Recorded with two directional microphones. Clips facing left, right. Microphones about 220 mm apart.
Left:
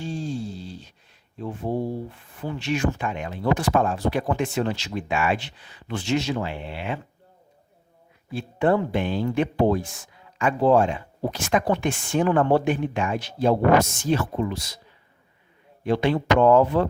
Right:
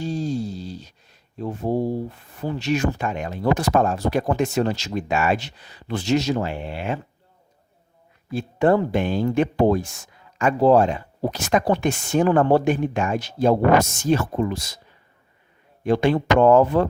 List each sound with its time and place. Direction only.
0.0 s a sound: 40° right (ahead or behind)
1.4 s speech: 40° right (ahead or behind)
8.3 s speech: 40° right (ahead or behind)
15.8 s speech: 45° right (ahead or behind)